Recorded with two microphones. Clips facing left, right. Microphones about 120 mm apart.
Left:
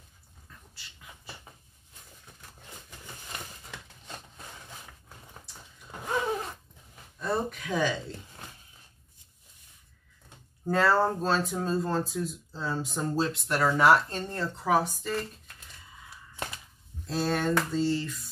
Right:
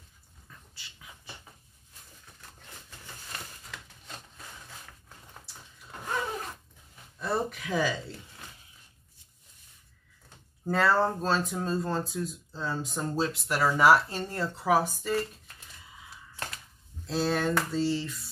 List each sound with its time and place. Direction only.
0.5 s dog: centre (ahead or behind)
3.3 s a sound: 20° left (ahead or behind)
7.2 s speech: 5° right (ahead or behind)
10.6 s speech: centre (ahead or behind)
17.0 s speech: centre (ahead or behind)